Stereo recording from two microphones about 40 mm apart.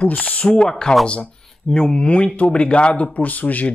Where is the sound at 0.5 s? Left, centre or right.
Centre.